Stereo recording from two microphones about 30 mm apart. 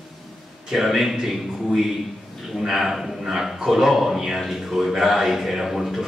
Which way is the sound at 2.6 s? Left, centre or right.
Centre.